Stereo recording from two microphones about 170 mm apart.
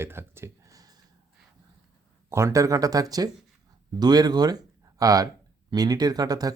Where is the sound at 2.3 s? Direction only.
15° right (ahead or behind).